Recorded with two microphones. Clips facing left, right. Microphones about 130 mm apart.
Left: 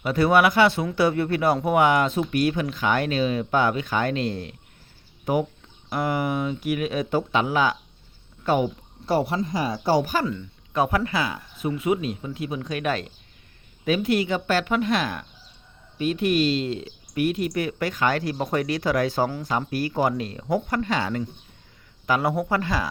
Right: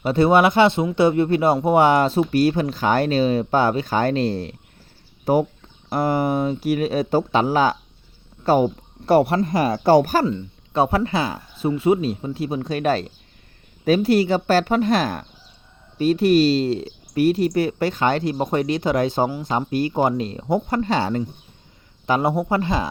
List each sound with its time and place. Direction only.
0.0 s speech: 25° right (ahead or behind)
9.0 s speech: 65° right (ahead or behind); by 10.2 s 45° right (ahead or behind)
10.2 s speech: 30° right (ahead or behind)